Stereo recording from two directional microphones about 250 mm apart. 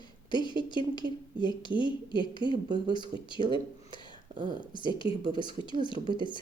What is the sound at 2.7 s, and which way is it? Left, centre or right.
Speech, centre.